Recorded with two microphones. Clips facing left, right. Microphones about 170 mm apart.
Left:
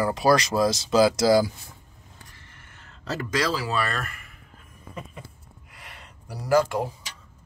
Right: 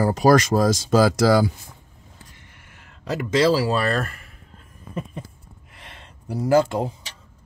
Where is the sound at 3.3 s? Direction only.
30° right (ahead or behind).